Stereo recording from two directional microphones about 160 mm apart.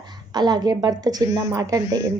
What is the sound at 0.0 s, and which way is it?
A woman's voice, 25° right (ahead or behind).